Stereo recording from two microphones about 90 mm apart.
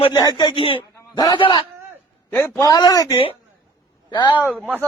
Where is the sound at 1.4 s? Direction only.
70° left (ahead or behind).